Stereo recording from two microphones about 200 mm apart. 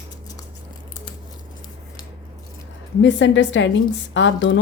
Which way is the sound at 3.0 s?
65° left (ahead or behind).